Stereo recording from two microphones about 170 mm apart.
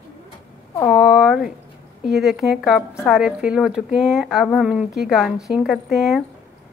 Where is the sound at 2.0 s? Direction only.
Centre (ahead or behind).